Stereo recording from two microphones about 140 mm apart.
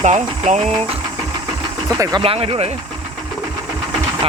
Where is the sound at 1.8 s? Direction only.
25° right (ahead or behind).